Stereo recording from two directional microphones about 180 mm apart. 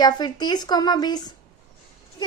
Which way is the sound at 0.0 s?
25° left (ahead or behind).